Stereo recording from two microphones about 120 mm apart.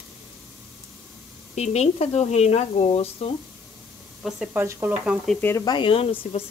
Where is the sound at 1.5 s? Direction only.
65° left (ahead or behind).